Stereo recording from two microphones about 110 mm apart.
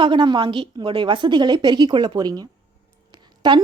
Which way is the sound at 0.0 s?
45° right (ahead or behind).